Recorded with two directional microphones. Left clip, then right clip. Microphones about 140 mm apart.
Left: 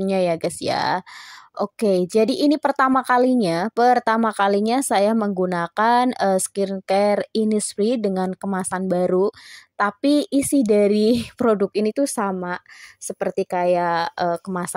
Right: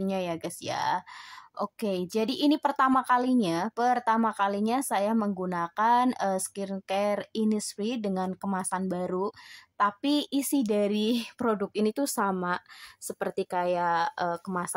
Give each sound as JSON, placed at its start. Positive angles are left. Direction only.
{"t": 0.0, "sound": "a woman's voice", "side_deg": 45}